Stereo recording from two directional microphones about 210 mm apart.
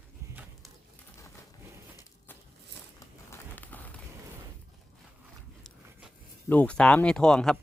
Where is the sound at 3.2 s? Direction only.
10° left (ahead or behind).